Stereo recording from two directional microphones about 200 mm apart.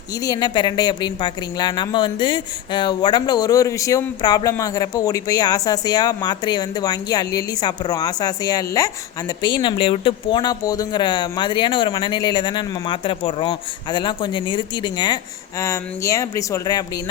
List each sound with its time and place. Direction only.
0.2 s speech: 20° left (ahead or behind)